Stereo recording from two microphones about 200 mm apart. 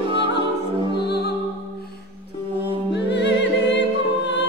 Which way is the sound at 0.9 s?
55° left (ahead or behind).